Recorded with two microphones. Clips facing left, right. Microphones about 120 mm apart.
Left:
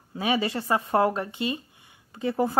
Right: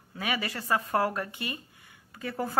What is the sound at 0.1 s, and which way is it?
Speech, 25° left (ahead or behind).